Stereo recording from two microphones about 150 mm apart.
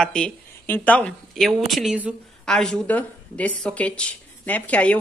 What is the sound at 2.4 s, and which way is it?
A woman's voice, 5° left (ahead or behind).